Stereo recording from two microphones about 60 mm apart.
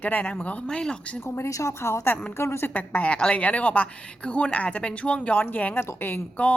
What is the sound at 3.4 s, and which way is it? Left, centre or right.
A woman's voice, left.